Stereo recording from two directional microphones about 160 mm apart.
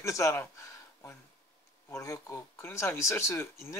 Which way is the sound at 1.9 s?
20° left (ahead or behind).